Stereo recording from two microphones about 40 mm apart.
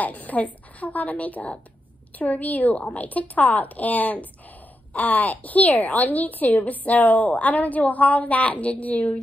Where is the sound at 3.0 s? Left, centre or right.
Left.